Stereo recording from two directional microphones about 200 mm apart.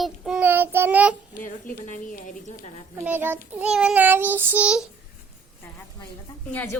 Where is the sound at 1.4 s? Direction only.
40° left (ahead or behind).